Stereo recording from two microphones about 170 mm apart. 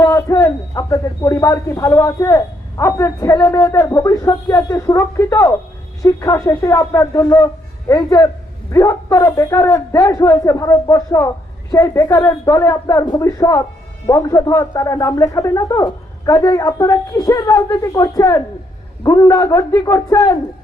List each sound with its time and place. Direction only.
0.0 s a man's voice: 20° left (ahead or behind)